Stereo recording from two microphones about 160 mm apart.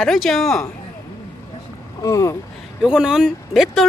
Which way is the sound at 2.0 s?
20° left (ahead or behind).